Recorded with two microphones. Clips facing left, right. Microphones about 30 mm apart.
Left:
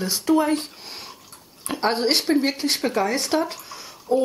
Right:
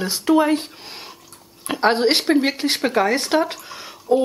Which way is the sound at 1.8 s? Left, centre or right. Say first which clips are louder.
Right 4 dB; right.